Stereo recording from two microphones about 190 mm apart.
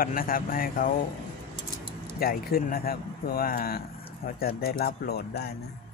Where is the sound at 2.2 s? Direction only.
50° left (ahead or behind).